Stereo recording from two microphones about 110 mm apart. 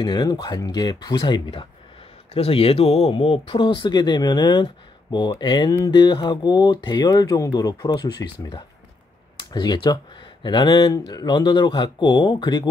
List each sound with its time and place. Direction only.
0.0 s speech: 45° left (ahead or behind)
2.3 s speech: 60° left (ahead or behind); by 12.6 s 45° left (ahead or behind)